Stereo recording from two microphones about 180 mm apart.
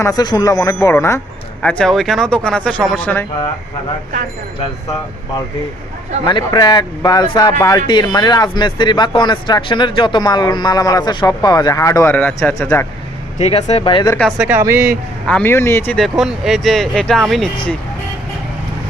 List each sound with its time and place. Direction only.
0.0 s speech: 20° left (ahead or behind)
1.6 s speech: 5° left (ahead or behind)
6.2 s speech: 25° left (ahead or behind)
13.4 s speech: 35° left (ahead or behind)
14.2 s speech: centre (ahead or behind)
15.3 s a man's voice: 10° left (ahead or behind)
16.0 s speech: centre (ahead or behind)